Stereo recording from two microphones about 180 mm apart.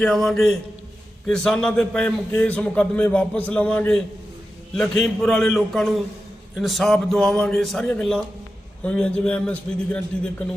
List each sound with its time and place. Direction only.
0.0 s a man's voice: centre (ahead or behind)